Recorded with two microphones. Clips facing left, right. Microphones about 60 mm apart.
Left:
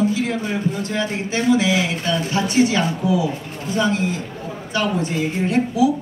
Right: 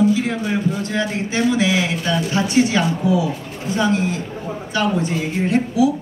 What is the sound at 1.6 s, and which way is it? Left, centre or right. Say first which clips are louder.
Speech: right 1 dB; right.